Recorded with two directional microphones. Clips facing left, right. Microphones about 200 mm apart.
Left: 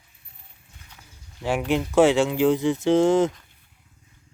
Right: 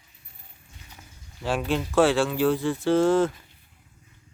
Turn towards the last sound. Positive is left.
turn(degrees=20)  # may be behind; listen again after turning